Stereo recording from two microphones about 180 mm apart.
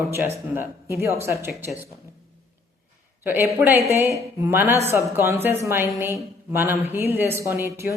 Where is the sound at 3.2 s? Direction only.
15° right (ahead or behind).